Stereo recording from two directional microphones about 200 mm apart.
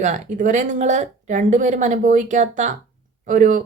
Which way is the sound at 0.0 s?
35° right (ahead or behind).